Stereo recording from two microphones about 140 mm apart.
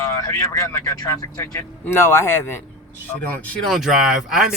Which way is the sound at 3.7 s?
Centre (ahead or behind).